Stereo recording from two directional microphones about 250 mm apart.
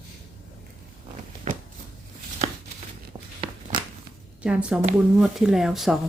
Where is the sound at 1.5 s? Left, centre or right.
Right.